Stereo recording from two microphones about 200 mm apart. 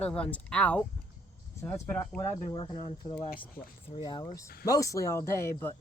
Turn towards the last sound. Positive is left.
turn(degrees=15)  # may be behind; listen again after turning